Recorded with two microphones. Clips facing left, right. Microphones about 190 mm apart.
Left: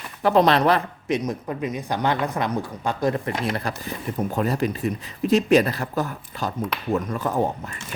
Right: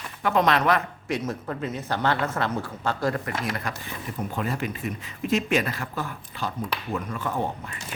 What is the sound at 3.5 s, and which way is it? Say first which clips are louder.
Speech: left 4 dB; 35° left (ahead or behind).